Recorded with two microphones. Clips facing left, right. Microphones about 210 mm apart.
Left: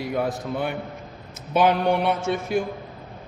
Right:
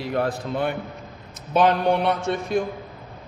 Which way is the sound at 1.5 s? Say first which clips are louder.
Right 1 dB; 10° left (ahead or behind).